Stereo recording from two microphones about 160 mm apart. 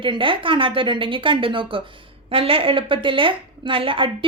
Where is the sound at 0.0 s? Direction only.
30° right (ahead or behind).